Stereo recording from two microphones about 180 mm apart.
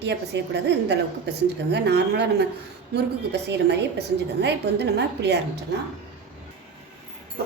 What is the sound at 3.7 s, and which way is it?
A woman's voice, 75° right (ahead or behind).